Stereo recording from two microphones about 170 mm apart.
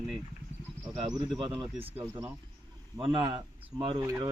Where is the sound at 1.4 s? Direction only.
35° right (ahead or behind).